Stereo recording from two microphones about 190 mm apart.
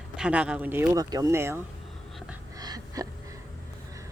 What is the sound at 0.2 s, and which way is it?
Speech, 5° right (ahead or behind).